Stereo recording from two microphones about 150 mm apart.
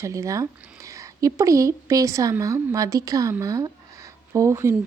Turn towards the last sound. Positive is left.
turn(degrees=-20)  # may be behind; listen again after turning